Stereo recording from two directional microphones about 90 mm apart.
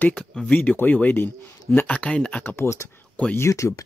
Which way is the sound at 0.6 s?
20° left (ahead or behind).